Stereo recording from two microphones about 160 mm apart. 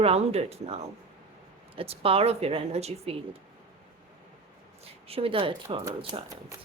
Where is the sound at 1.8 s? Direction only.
35° right (ahead or behind).